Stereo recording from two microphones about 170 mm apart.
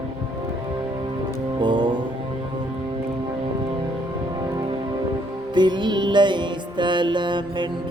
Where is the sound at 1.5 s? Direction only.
25° right (ahead or behind).